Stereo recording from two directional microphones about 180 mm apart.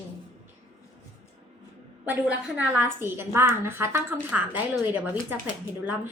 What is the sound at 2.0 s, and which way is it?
A woman's voice, 10° right (ahead or behind).